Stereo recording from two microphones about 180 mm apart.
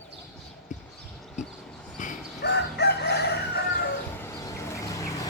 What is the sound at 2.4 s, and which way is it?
Chicken, 70° left (ahead or behind).